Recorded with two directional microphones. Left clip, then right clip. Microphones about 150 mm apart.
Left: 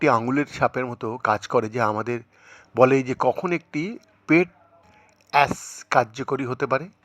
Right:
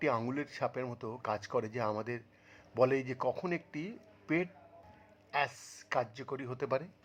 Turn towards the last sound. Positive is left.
turn(degrees=30)  # may be behind; listen again after turning